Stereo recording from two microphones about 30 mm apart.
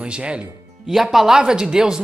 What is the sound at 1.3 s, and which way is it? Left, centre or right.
Speech, right.